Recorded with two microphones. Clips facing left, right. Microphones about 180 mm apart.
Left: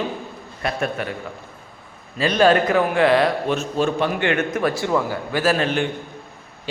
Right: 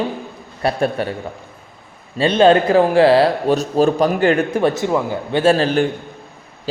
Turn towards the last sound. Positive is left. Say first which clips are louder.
# right 5 dB
turn(degrees=-35)  # may be behind; listen again after turning